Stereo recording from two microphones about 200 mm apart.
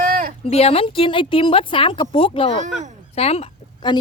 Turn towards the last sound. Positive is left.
turn(degrees=30)  # may be behind; listen again after turning